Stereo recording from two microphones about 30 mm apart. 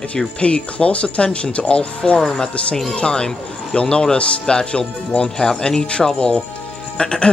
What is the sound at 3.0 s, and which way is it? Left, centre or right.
Speech, left.